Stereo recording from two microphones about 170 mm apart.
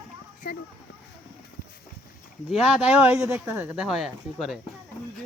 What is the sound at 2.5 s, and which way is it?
Speech, 10° right (ahead or behind).